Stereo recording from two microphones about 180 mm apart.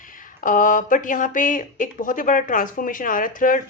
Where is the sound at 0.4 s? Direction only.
50° left (ahead or behind).